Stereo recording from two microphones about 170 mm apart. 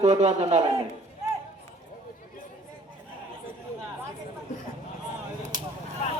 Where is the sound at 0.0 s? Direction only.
45° right (ahead or behind).